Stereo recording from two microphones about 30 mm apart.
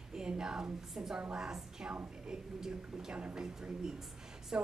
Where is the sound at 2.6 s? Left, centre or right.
Centre.